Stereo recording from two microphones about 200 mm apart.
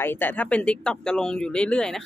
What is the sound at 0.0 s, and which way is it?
Speech, 10° left (ahead or behind).